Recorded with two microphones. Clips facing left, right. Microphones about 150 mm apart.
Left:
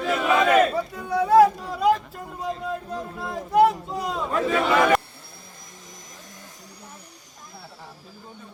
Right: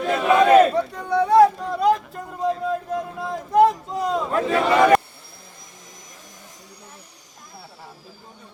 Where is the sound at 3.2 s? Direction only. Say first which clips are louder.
Right 2 dB; centre (ahead or behind).